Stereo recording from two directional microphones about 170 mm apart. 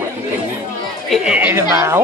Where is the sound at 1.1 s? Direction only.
5° right (ahead or behind).